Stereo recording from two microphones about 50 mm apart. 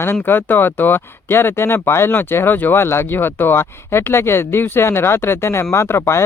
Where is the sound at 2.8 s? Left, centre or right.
Left.